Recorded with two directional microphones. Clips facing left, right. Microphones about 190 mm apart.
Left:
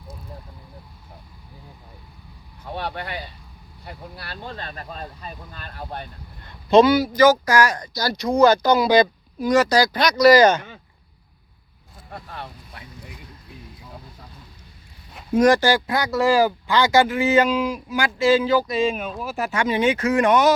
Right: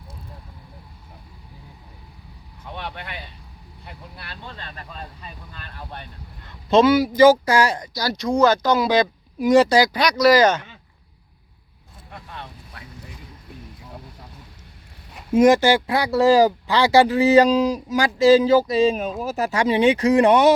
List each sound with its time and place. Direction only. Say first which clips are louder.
2.7 s speech: left 5 dB; 40° left (ahead or behind)
6.7 s speech: left 1 dB; centre (ahead or behind)
7.1 s speech: right 2 dB; 25° right (ahead or behind)
8.2 s speech: left 2 dB; centre (ahead or behind)
9.4 s speech: right 3 dB; 25° right (ahead or behind)
9.9 s speech: left 2 dB; 10° right (ahead or behind)
12.1 s speech: left 2 dB; 35° left (ahead or behind)
15.4 s speech: right 2 dB; 20° right (ahead or behind)